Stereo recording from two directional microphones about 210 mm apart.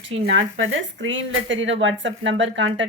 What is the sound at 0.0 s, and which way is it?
Speech, 60° right (ahead or behind).